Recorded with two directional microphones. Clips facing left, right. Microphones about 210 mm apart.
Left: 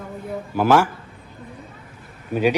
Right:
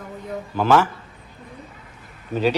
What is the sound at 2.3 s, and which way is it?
Speech, 10° left (ahead or behind).